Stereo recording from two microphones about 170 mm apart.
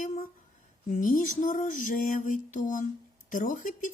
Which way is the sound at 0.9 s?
50° left (ahead or behind).